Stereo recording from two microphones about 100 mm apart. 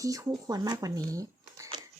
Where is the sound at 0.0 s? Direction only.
35° right (ahead or behind).